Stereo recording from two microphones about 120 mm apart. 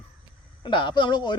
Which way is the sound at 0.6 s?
40° left (ahead or behind).